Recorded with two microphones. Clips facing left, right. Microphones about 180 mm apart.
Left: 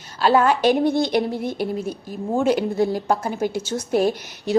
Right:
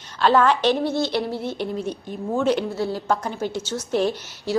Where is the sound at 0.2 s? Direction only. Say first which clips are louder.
Left 1 dB; 10° left (ahead or behind).